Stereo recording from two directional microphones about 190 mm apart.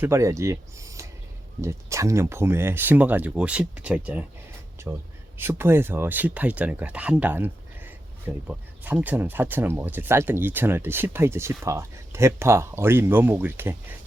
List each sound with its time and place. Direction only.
0.0 s speech: 15° right (ahead or behind)